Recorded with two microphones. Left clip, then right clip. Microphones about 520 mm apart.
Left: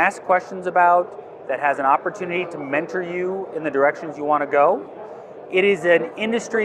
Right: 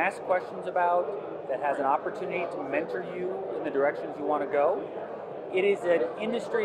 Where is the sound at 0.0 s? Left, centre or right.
Left.